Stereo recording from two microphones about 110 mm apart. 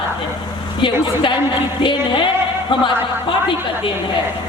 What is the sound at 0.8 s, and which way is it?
A woman's voice, 45° left (ahead or behind).